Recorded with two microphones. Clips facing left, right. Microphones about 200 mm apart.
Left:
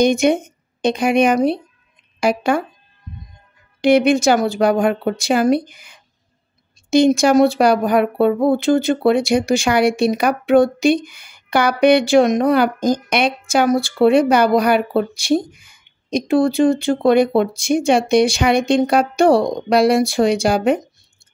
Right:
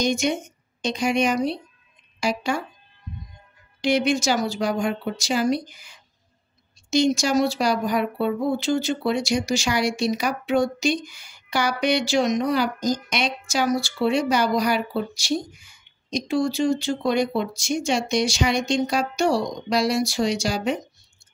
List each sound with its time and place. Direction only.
0.0 s a woman's voice: 55° left (ahead or behind)
3.8 s speech: 55° left (ahead or behind)